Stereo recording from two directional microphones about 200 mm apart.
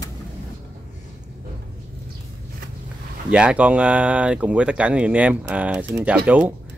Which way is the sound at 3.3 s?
5° right (ahead or behind).